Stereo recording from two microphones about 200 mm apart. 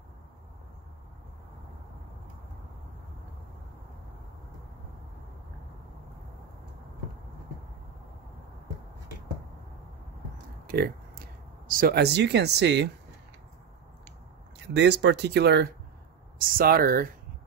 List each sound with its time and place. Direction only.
10.7 s a sound: 50° right (ahead or behind)
11.7 s speech: 50° right (ahead or behind)
14.6 s speech: 60° right (ahead or behind)